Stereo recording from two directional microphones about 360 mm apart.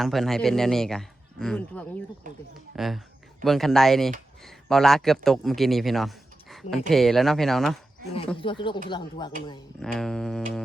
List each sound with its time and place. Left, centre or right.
0.0 s a man's voice: centre
2.3 s speech: right
2.7 s a man's voice: centre
8.4 s speech: centre
9.8 s a man's voice: centre